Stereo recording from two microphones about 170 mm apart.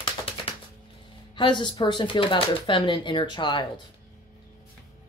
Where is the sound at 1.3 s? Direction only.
30° left (ahead or behind).